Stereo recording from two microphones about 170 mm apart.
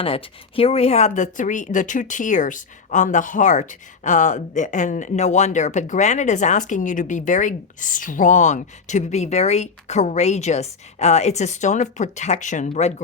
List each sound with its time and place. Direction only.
0.0 s speech: 35° left (ahead or behind)